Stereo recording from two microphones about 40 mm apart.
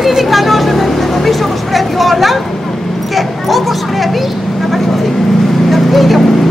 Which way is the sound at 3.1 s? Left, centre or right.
Centre.